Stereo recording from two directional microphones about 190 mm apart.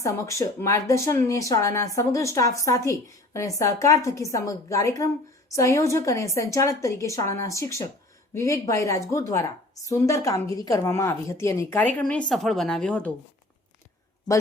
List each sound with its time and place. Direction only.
0.0 s a woman's voice: 15° left (ahead or behind)